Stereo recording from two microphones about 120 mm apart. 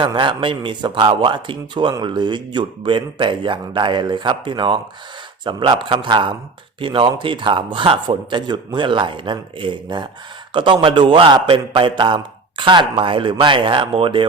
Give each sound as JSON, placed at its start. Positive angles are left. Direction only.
{"t": 0.0, "sound": "a man's voice", "side_deg": -45}